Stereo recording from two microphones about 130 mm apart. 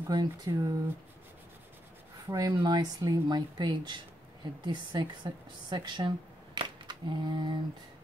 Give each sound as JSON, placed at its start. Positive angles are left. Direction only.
{"t": 0.1, "sound": "speech", "side_deg": -30}
{"t": 2.2, "sound": "a woman's voice", "side_deg": -25}